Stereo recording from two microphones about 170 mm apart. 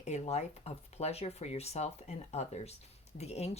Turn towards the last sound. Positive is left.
turn(degrees=40)  # may be behind; listen again after turning